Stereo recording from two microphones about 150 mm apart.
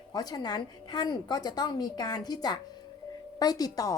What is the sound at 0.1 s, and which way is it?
A woman's voice, 25° left (ahead or behind).